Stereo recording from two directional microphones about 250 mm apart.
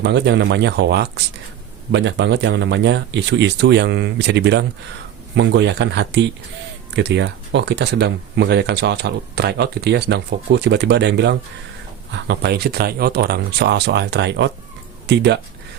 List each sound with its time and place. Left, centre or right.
0.0 s speech: right